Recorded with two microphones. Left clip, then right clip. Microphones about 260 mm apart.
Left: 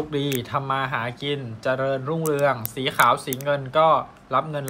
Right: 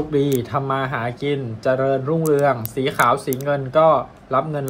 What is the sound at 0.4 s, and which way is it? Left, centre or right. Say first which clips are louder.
Speech: right 3 dB; left.